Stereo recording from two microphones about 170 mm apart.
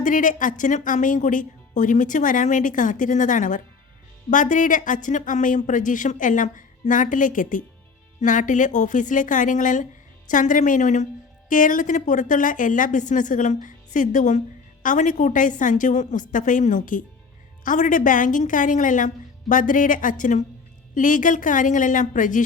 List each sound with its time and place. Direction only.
0.0 s a woman's voice: 50° left (ahead or behind)